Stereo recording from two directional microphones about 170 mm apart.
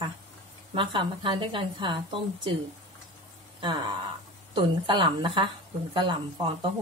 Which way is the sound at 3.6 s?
30° right (ahead or behind).